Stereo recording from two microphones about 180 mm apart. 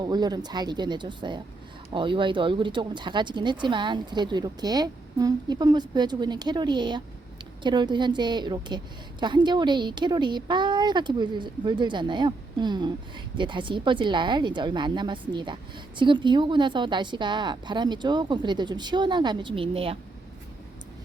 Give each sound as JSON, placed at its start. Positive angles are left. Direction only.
{"t": 0.0, "sound": "speech", "side_deg": -25}